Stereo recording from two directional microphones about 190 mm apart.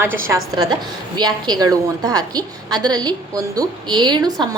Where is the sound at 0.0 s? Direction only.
15° right (ahead or behind).